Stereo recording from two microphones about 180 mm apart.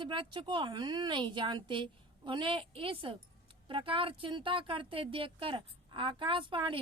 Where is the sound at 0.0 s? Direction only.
25° right (ahead or behind).